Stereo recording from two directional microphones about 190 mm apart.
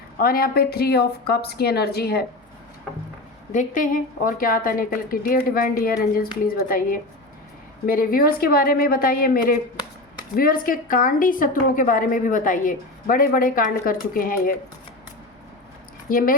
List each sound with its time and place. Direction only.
0.2 s a woman's voice: 50° left (ahead or behind)
3.5 s a woman's voice: 40° left (ahead or behind)
16.0 s speech: 50° left (ahead or behind)